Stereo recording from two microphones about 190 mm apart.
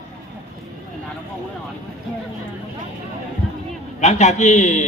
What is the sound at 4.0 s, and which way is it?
Speech, 35° left (ahead or behind).